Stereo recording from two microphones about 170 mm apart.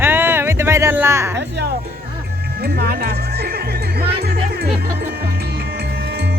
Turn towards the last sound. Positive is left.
turn(degrees=-70)  # may be behind; listen again after turning